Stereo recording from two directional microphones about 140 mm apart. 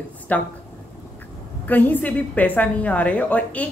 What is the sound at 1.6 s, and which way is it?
A woman's voice, 15° left (ahead or behind).